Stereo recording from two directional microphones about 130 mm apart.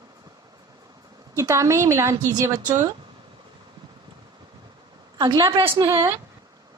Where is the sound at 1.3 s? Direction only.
25° right (ahead or behind).